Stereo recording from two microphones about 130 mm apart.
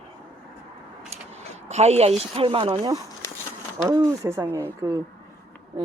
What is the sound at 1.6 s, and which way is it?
A woman's voice, 55° right (ahead or behind).